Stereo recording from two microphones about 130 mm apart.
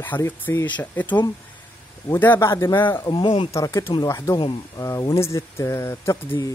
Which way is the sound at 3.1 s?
40° left (ahead or behind).